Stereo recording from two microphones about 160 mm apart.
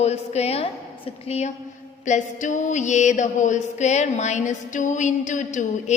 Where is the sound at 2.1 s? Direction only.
50° left (ahead or behind).